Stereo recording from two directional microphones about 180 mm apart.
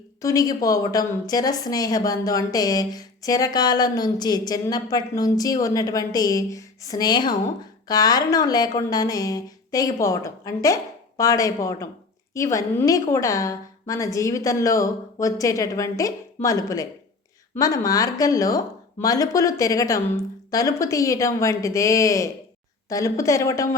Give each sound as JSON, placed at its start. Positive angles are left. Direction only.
{"t": 0.2, "sound": "a woman's voice", "side_deg": 20}